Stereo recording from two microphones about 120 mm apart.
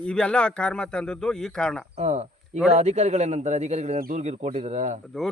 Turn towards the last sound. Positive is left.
turn(degrees=-80)